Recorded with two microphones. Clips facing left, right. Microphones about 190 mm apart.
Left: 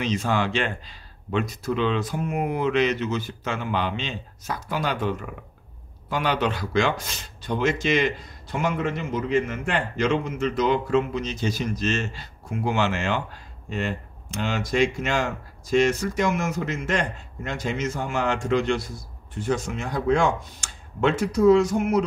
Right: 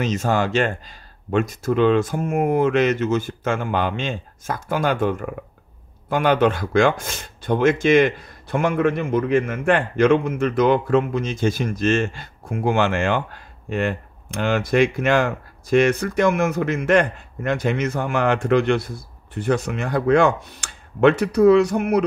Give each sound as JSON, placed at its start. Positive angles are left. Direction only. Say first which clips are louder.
{"t": 0.0, "sound": "speech", "louder": "right 3 dB", "side_deg": -45}